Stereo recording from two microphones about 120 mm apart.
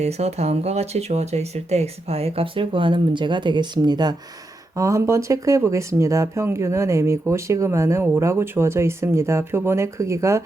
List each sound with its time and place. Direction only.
0.0 s speech: 65° right (ahead or behind); by 4.1 s 35° right (ahead or behind)
4.7 s speech: 25° right (ahead or behind)